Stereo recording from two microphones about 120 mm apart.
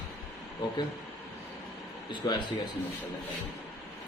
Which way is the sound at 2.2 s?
35° left (ahead or behind).